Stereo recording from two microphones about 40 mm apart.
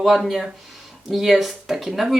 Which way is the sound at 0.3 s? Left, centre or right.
Centre.